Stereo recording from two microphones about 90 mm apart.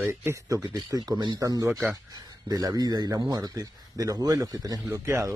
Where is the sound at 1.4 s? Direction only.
40° right (ahead or behind).